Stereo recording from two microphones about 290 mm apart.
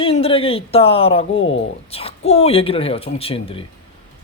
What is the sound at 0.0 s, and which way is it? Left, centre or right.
A man's voice, centre.